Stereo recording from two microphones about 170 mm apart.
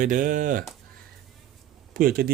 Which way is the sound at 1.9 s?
55° right (ahead or behind).